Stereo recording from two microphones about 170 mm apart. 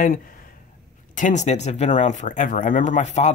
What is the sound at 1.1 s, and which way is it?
Speech, 45° left (ahead or behind).